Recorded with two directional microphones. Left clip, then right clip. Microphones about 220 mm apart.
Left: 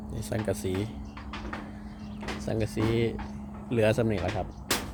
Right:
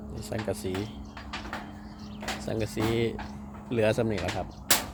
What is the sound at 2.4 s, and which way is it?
Speech, 10° left (ahead or behind).